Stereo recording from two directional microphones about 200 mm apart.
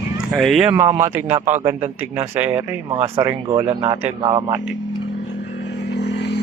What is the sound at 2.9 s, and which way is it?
Speech, 30° right (ahead or behind).